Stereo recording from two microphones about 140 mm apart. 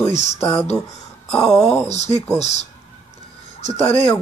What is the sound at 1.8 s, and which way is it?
Speech, 50° left (ahead or behind).